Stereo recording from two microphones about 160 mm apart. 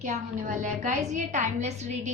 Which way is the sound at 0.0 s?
50° right (ahead or behind).